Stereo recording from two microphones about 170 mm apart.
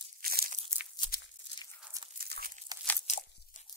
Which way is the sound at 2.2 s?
60° right (ahead or behind).